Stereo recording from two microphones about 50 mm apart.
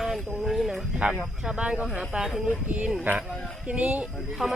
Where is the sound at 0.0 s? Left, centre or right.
Centre.